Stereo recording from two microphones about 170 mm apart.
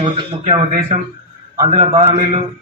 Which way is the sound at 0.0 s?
35° right (ahead or behind).